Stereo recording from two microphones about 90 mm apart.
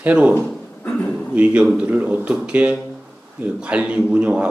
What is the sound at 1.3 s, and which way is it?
A man's voice, 15° right (ahead or behind).